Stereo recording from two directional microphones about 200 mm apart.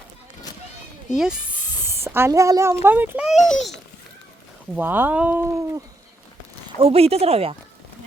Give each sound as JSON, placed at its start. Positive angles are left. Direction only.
{"t": 1.1, "sound": "speech", "side_deg": -5}
{"t": 4.7, "sound": "speech", "side_deg": -10}
{"t": 6.7, "sound": "speech", "side_deg": -30}